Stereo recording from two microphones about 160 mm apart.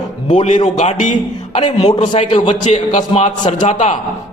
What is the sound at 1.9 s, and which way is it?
Speech, 30° left (ahead or behind).